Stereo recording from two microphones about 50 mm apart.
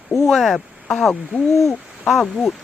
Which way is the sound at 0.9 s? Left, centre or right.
Centre.